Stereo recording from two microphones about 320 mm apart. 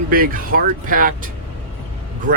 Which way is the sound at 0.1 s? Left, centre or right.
Right.